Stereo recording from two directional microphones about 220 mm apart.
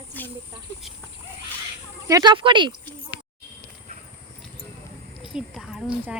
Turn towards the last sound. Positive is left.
turn(degrees=-5)  # may be behind; listen again after turning